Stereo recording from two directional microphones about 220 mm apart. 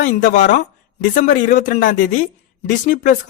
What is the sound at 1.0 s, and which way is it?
A man's voice, 35° left (ahead or behind).